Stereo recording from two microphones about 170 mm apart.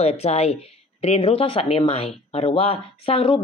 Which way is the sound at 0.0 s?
40° left (ahead or behind).